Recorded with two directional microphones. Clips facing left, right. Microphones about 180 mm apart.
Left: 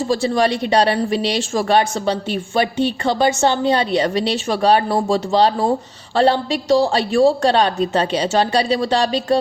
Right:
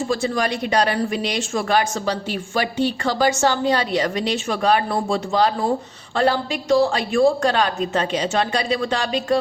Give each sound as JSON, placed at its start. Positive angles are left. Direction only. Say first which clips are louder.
{"t": 0.1, "sound": "a woman's voice", "louder": "left 7 dB", "side_deg": 30}